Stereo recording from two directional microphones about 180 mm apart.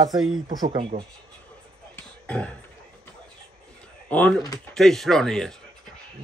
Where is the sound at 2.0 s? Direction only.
5° left (ahead or behind).